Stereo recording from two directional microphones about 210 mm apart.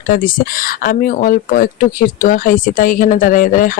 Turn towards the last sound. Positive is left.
turn(degrees=40)  # may be behind; listen again after turning